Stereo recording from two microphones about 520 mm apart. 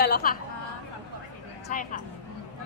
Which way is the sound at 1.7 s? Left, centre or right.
Centre.